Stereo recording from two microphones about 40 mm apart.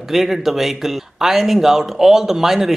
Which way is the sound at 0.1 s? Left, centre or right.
Centre.